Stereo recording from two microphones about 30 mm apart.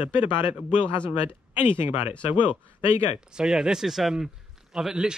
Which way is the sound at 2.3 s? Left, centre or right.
Right.